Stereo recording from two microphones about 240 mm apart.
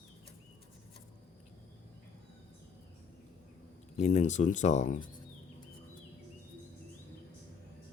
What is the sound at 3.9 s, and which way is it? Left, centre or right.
Speech, left.